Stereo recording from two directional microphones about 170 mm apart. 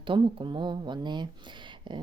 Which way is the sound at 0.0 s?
30° right (ahead or behind).